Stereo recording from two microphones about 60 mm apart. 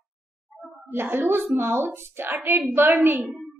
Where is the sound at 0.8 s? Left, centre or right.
Right.